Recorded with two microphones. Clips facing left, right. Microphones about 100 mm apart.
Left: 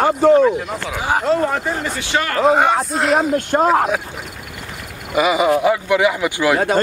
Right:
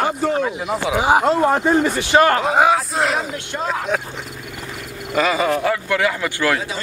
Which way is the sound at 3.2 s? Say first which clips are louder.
Left 9 dB; 45° left (ahead or behind).